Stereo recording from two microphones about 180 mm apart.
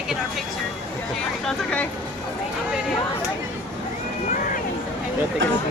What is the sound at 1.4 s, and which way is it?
Speech, 10° left (ahead or behind).